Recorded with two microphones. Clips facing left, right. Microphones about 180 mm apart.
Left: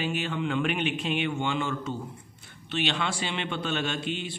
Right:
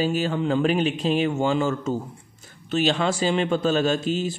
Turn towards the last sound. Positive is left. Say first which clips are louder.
# right 8 dB
turn(degrees=-40)  # may be behind; listen again after turning